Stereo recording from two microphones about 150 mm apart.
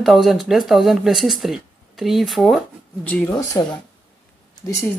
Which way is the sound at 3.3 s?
20° left (ahead or behind).